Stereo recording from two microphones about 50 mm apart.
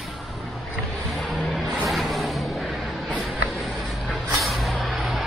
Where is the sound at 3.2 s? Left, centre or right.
Centre.